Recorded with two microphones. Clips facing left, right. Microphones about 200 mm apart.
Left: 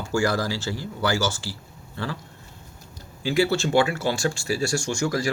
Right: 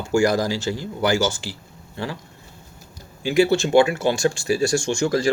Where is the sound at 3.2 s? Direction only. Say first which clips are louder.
Right 4 dB; 15° right (ahead or behind).